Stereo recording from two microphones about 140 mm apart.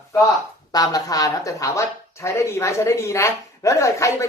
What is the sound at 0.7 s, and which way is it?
A woman's voice, 25° left (ahead or behind).